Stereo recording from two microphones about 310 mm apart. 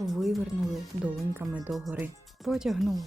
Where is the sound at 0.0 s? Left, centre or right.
Centre.